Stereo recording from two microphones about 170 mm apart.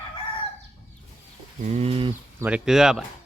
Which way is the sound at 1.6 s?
40° right (ahead or behind).